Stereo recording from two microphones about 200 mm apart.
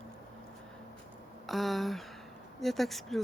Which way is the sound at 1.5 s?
Centre (ahead or behind).